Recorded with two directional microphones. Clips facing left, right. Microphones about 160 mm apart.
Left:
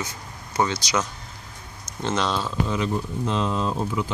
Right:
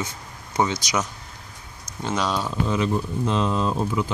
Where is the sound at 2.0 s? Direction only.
10° right (ahead or behind).